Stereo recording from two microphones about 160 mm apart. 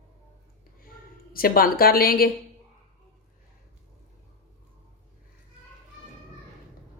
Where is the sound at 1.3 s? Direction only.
65° left (ahead or behind).